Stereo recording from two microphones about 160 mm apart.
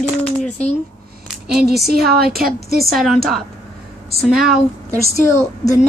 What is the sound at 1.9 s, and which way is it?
Speech, 75° right (ahead or behind).